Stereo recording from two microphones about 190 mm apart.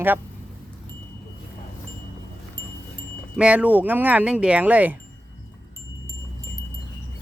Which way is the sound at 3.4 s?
5° right (ahead or behind).